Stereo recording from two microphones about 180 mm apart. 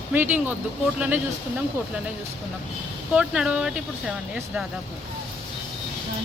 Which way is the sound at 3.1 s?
5° right (ahead or behind).